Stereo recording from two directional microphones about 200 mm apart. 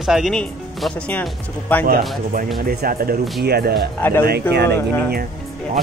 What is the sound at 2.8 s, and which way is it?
Speech, 50° right (ahead or behind).